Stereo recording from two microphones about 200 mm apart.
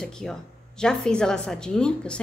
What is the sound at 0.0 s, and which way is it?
A woman's voice, 5° left (ahead or behind).